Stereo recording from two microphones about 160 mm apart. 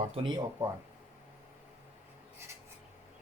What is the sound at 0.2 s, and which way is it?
Cattle, 25° right (ahead or behind).